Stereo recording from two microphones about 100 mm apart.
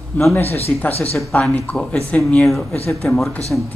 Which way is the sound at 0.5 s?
90° left.